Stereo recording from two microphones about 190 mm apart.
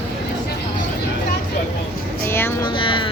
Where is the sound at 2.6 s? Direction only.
25° left (ahead or behind).